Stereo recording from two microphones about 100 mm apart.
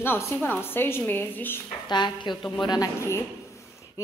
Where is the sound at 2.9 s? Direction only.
25° left (ahead or behind).